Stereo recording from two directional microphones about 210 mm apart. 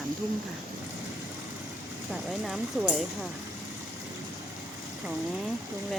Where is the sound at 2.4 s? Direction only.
Centre (ahead or behind).